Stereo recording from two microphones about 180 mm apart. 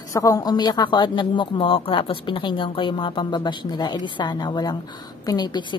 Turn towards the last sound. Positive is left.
turn(degrees=25)  # may be behind; listen again after turning